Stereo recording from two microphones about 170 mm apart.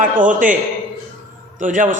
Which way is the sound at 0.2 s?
50° right (ahead or behind).